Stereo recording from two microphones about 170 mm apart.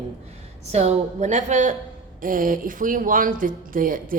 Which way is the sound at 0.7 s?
40° right (ahead or behind).